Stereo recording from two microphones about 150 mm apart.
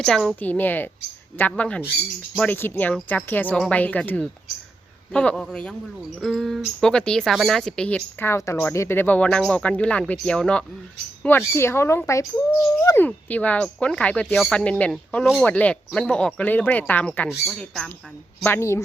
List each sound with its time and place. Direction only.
0.0 s speech: 5° left (ahead or behind)
18.4 s speech: 15° left (ahead or behind)